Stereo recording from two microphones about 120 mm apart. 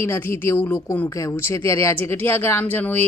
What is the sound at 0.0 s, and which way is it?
Speech, 20° left (ahead or behind).